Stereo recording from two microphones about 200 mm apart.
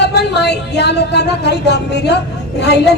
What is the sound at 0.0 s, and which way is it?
A woman's voice, 55° left (ahead or behind).